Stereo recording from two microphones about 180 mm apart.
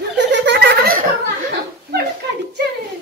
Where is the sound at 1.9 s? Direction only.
65° right (ahead or behind).